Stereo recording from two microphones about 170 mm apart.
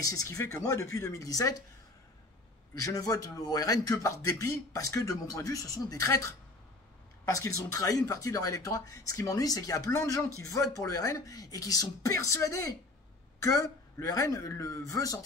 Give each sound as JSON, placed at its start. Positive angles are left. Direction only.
{"t": 0.0, "sound": "speech", "side_deg": 20}
{"t": 2.7, "sound": "speech", "side_deg": 20}